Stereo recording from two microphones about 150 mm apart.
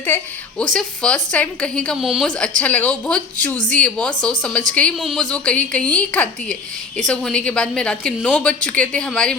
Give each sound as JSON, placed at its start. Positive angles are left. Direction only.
{"t": 0.8, "sound": "a woman's voice", "side_deg": 5}